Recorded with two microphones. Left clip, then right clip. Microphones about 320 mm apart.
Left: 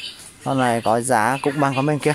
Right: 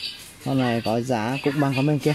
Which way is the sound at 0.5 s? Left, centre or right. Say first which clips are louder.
Left 5 dB; left.